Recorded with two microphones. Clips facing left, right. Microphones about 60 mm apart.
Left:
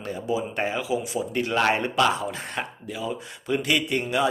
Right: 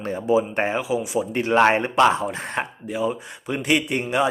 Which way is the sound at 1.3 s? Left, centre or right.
Right.